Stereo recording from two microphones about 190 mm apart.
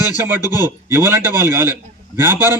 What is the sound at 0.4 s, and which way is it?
Speech, 20° left (ahead or behind).